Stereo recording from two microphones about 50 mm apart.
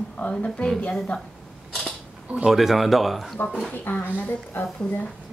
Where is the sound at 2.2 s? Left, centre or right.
Right.